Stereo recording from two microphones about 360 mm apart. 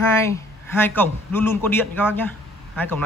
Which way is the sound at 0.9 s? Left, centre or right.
Centre.